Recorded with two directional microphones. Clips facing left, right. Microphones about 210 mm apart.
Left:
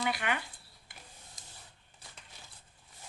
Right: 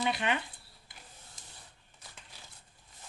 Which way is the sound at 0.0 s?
25° right (ahead or behind).